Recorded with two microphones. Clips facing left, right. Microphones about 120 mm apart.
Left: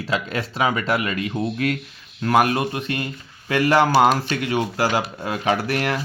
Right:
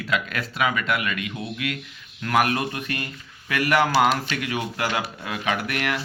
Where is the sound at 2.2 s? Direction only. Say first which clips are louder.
Left 4 dB; 30° left (ahead or behind).